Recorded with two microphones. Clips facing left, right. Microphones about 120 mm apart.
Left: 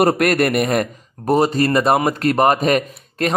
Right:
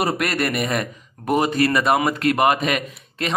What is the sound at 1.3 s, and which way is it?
A man's voice, 35° left (ahead or behind).